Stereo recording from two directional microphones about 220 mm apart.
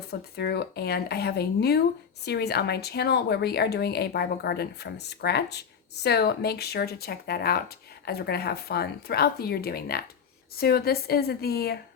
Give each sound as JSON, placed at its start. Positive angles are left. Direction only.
{"t": 0.1, "sound": "speech", "side_deg": 45}